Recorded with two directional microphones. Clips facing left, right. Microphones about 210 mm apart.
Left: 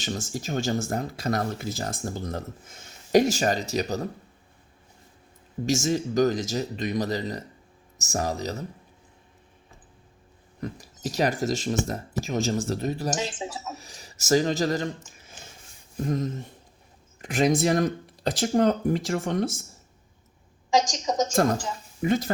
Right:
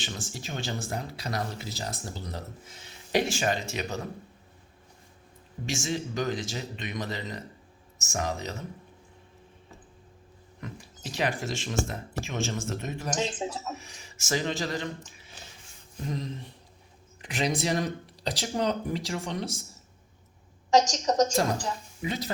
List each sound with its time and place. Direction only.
0.0 s speech: 40° left (ahead or behind)
5.6 s speech: 40° left (ahead or behind)
10.6 s speech: 40° left (ahead or behind)
13.1 s speech: 5° left (ahead or behind)
13.7 s speech: 35° left (ahead or behind)
22.0 s speech: 50° left (ahead or behind)